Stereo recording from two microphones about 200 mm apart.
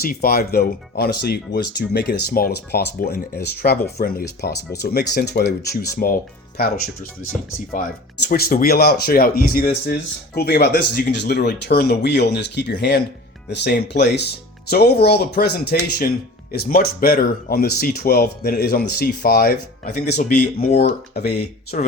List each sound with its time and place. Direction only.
0.0 s speech: 50° left (ahead or behind)
8.3 s speech: 45° left (ahead or behind)
20.1 s speech: 40° left (ahead or behind)